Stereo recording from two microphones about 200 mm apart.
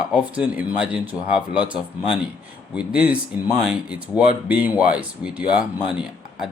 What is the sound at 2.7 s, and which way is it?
Speech, 5° right (ahead or behind).